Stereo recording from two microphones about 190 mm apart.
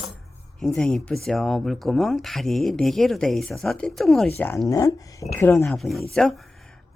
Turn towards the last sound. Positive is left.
turn(degrees=0)  # may be behind; listen again after turning